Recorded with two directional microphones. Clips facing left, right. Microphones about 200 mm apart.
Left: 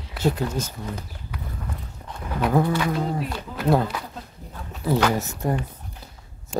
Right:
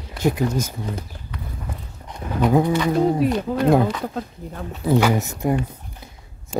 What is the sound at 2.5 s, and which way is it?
Speech, 15° right (ahead or behind).